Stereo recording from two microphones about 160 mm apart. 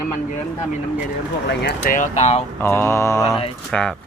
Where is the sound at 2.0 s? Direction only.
45° left (ahead or behind).